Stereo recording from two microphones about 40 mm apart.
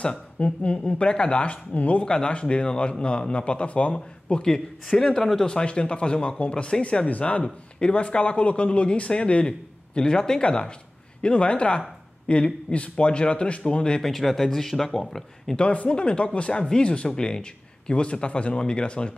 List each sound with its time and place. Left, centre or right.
0.4 s speech: left
0.9 s speech: left
2.0 s speech: left
4.9 s speech: centre
5.5 s speech: left
7.1 s speech: left
14.0 s speech: centre
15.7 s speech: left
16.0 s speech: left